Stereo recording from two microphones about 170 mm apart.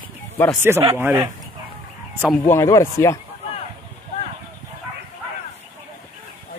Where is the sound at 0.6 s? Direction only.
15° right (ahead or behind).